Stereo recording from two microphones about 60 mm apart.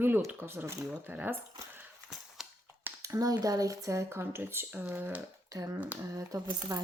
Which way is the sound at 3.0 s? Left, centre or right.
Right.